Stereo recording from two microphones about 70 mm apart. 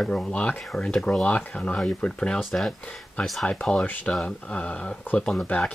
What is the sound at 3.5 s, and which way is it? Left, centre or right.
Speech, centre.